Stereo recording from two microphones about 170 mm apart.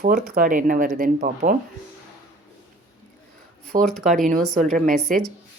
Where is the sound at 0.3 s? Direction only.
55° right (ahead or behind).